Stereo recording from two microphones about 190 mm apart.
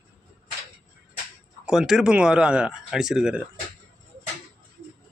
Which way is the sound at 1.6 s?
5° right (ahead or behind).